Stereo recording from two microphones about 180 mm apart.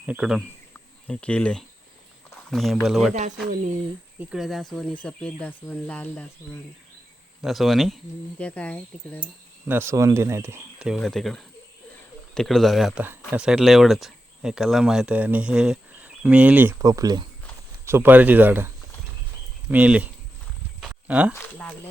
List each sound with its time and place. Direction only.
0.0 s speech: 5° right (ahead or behind)
0.7 s cricket: 5° left (ahead or behind)
2.5 s speech: centre (ahead or behind)
3.5 s speech: 45° right (ahead or behind)
4.2 s speech: 5° right (ahead or behind)
9.6 s speech: 15° right (ahead or behind)
10.8 s speech: centre (ahead or behind)
19.7 s speech: 5° right (ahead or behind)
20.8 s a sound: 5° right (ahead or behind)
21.3 s speech: 10° left (ahead or behind)